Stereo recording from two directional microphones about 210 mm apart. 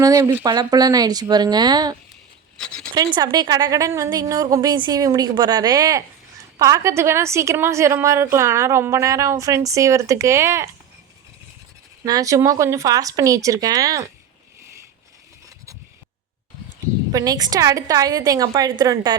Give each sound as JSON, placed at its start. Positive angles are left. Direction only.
{"t": 0.0, "sound": "a woman's voice", "side_deg": -15}
{"t": 2.6, "sound": "speech", "side_deg": 5}
{"t": 2.9, "sound": "a woman's voice", "side_deg": -20}
{"t": 12.0, "sound": "a woman's voice", "side_deg": -15}
{"t": 17.1, "sound": "a woman's voice", "side_deg": -15}